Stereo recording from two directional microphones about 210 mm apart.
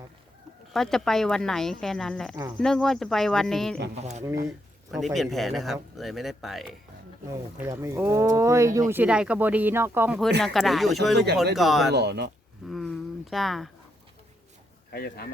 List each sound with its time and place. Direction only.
0.7 s speech: centre (ahead or behind)
4.2 s speech: 15° right (ahead or behind)
4.9 s speech: centre (ahead or behind)
7.3 s speech: 15° right (ahead or behind)
10.4 s speech: centre (ahead or behind)
11.9 s speech: 50° right (ahead or behind)
12.6 s speech: centre (ahead or behind)
14.9 s speech: 50° left (ahead or behind)